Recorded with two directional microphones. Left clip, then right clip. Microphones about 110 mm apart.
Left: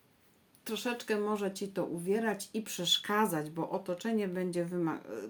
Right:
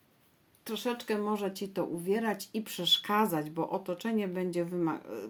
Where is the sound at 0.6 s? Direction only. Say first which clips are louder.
Right 2 dB; 15° right (ahead or behind).